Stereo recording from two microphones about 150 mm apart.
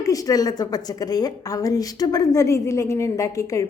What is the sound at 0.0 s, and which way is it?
A woman's voice, 25° left (ahead or behind).